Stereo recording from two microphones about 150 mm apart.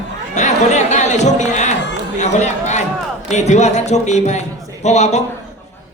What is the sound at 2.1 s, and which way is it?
A man's voice, 50° left (ahead or behind).